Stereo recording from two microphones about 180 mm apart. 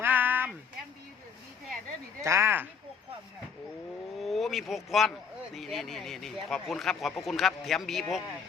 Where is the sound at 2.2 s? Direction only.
15° right (ahead or behind).